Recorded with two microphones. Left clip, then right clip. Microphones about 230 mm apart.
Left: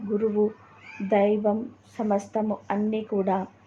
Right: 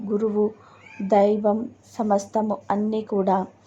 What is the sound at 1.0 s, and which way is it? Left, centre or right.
Speech, right.